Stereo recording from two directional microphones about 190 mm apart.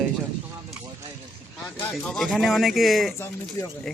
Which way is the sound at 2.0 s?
Centre (ahead or behind).